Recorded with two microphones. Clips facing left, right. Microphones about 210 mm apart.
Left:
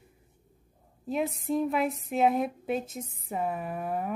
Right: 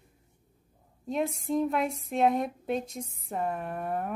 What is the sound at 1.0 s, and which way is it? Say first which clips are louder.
A woman's voice: even; 5° left (ahead or behind).